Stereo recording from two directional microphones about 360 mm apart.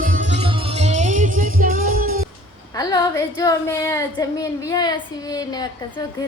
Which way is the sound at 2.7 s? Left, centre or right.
Centre.